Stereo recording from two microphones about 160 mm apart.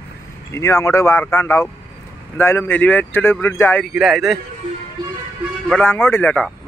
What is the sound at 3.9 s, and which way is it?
Speech, centre (ahead or behind).